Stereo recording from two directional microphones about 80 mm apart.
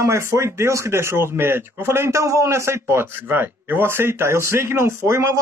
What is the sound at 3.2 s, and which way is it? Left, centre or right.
Speech, right.